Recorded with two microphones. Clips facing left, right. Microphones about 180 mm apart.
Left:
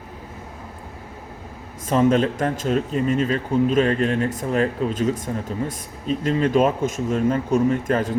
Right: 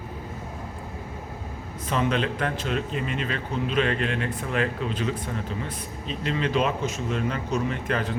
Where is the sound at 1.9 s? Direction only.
40° left (ahead or behind).